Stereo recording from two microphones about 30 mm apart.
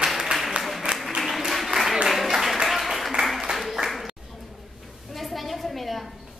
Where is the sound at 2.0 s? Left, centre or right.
Centre.